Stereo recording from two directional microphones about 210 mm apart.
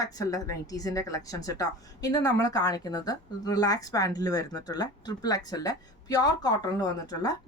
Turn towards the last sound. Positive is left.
turn(degrees=20)  # may be behind; listen again after turning